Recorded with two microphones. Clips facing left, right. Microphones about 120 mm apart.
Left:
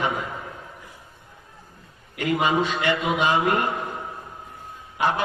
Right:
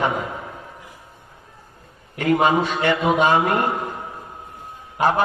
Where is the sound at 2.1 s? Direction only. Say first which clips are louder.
Right 4 dB; 45° right (ahead or behind).